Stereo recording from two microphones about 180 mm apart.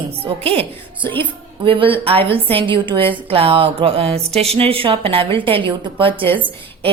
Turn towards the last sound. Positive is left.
turn(degrees=-30)  # may be behind; listen again after turning